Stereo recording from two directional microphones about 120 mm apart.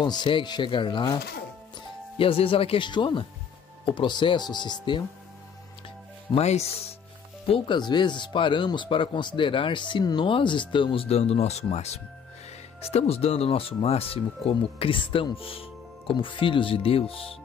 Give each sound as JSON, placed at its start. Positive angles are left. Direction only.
{"t": 0.0, "sound": "speech", "side_deg": 40}
{"t": 6.3, "sound": "speech", "side_deg": 60}
{"t": 7.4, "sound": "speech", "side_deg": 45}